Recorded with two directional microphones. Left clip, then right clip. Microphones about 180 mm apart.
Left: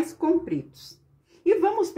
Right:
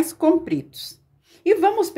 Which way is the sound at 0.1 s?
35° right (ahead or behind).